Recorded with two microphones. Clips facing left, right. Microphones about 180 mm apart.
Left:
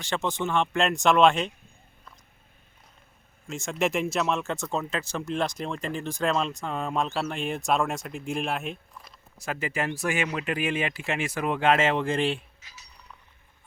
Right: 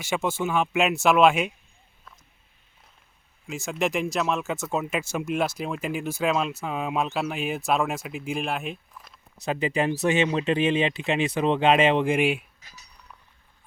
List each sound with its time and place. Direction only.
0.0 s speech: 10° right (ahead or behind)
3.4 s speech: centre (ahead or behind)
9.4 s speech: 20° right (ahead or behind)